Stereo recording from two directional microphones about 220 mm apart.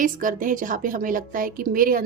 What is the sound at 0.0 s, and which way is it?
A woman's voice, 35° right (ahead or behind).